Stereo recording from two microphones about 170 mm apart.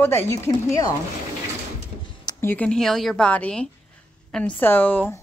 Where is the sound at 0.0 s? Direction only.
15° left (ahead or behind).